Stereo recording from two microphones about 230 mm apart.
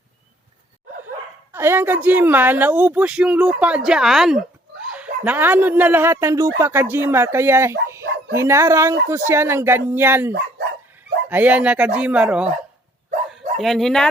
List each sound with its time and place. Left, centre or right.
1.5 s speech: centre